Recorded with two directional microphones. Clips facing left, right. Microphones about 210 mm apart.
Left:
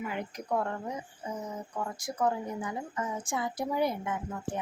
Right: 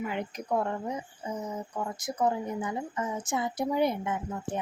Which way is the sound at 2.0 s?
20° right (ahead or behind).